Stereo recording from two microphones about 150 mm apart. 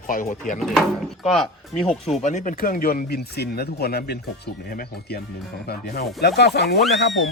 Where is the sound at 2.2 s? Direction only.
55° left (ahead or behind); by 4.2 s 90° left.